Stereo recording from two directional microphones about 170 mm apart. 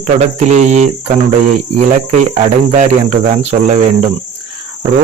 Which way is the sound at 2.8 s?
40° right (ahead or behind).